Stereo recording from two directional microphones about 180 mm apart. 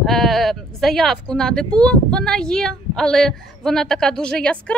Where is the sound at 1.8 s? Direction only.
5° left (ahead or behind).